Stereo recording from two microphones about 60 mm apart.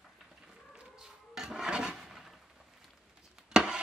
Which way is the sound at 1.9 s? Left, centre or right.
Centre.